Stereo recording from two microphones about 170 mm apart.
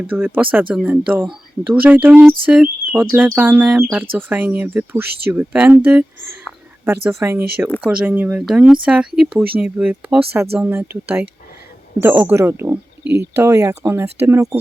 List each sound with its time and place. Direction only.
0.0 s speech: 10° right (ahead or behind)